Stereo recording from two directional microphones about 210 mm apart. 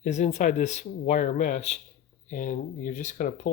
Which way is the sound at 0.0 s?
35° left (ahead or behind).